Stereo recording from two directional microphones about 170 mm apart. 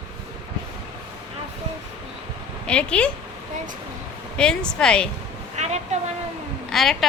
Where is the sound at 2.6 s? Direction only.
5° left (ahead or behind).